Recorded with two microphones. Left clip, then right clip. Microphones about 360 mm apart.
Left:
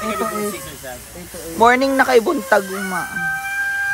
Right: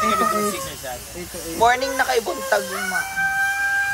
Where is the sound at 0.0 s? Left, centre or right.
Centre.